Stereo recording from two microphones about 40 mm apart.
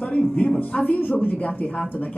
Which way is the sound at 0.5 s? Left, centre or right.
Left.